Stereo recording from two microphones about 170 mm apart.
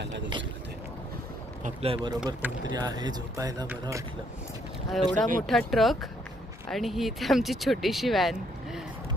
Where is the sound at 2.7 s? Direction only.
25° right (ahead or behind).